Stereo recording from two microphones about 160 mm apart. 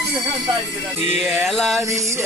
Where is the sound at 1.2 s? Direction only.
5° left (ahead or behind).